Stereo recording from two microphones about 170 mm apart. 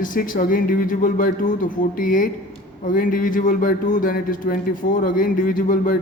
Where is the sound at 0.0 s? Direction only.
55° left (ahead or behind).